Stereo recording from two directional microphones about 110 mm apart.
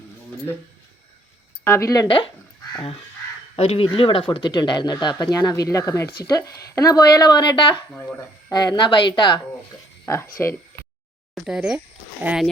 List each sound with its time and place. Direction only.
1.6 s speech: 25° left (ahead or behind)
2.0 s a woman's voice: 50° left (ahead or behind)
3.5 s speech: 65° left (ahead or behind)
3.8 s speech: 55° left (ahead or behind)
7.9 s speech: 20° left (ahead or behind)
8.5 s a woman's voice: 40° left (ahead or behind)
10.1 s speech: 25° left (ahead or behind)
11.4 s speech: 5° right (ahead or behind)